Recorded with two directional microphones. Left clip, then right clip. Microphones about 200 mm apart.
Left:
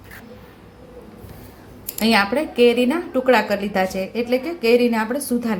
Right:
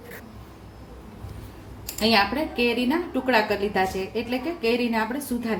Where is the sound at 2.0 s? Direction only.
35° left (ahead or behind).